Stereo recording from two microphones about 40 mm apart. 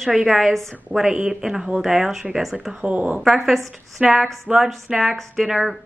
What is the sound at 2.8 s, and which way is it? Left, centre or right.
Speech, right.